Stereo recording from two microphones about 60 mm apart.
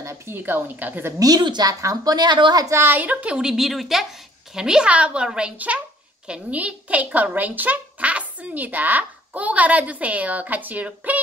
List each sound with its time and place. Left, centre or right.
0.3 s a woman's voice: right
1.2 s a woman's voice: right
2.7 s a woman's voice: right
3.0 s speech: right
3.4 s a woman's voice: centre
4.6 s a woman's voice: centre